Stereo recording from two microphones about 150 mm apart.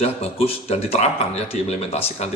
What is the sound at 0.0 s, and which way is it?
Speech, 40° left (ahead or behind).